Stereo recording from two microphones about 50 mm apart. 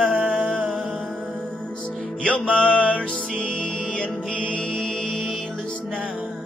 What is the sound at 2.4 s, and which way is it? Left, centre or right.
Music, centre.